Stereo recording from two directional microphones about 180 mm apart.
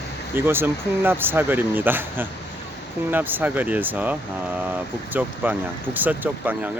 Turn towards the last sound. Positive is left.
turn(degrees=-10)  # may be behind; listen again after turning